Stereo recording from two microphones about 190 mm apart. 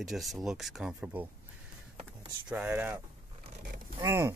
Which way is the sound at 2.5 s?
5° right (ahead or behind).